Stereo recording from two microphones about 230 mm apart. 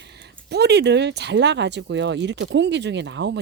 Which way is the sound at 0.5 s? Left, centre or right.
Right.